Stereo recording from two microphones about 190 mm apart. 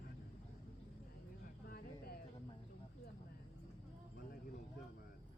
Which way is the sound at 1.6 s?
55° left (ahead or behind).